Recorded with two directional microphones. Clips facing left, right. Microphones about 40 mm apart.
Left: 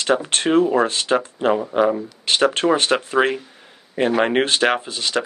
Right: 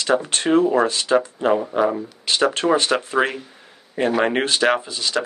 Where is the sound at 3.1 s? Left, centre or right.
Centre.